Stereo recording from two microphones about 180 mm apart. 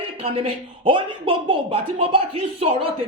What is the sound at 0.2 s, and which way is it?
Speech, 30° right (ahead or behind).